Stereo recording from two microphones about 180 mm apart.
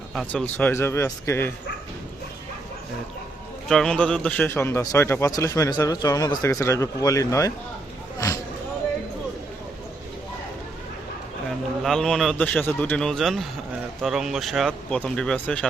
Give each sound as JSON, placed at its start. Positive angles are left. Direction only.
{"t": 0.1, "sound": "a man's voice", "side_deg": 0}
{"t": 3.7, "sound": "a man's voice", "side_deg": 5}
{"t": 11.8, "sound": "speech", "side_deg": 0}